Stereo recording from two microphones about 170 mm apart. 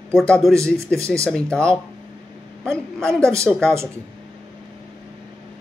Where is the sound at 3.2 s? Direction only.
15° right (ahead or behind).